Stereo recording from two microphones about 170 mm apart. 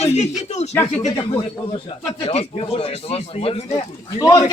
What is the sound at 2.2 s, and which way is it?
Speech, 35° left (ahead or behind).